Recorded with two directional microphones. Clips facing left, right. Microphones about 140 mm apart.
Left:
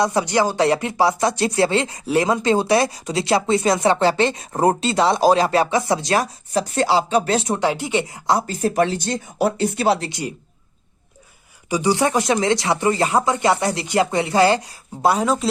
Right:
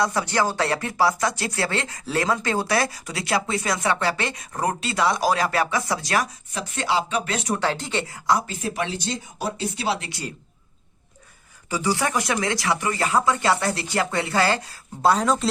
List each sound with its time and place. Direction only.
0.0 s speech: 20° left (ahead or behind)
6.5 s speech: 35° left (ahead or behind)
7.6 s a woman's voice: 15° left (ahead or behind)
8.4 s speech: 45° left (ahead or behind)
10.1 s speech: 20° left (ahead or behind)
11.7 s speech: 20° left (ahead or behind); by 15.4 s 5° left (ahead or behind)